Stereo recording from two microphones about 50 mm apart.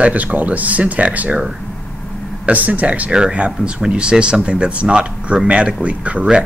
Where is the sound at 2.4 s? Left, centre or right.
Right.